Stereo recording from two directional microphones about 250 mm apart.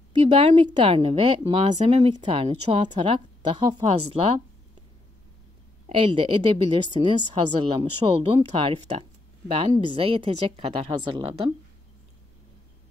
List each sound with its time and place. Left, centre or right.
0.1 s speech: right
5.9 s speech: right